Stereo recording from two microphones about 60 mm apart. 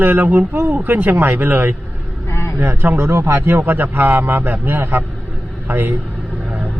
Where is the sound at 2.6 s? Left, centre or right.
Right.